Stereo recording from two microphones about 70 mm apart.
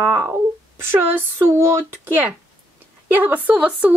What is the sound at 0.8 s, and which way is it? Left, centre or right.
A woman's voice, right.